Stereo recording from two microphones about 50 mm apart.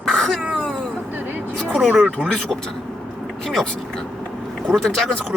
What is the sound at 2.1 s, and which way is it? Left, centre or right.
Speech, centre.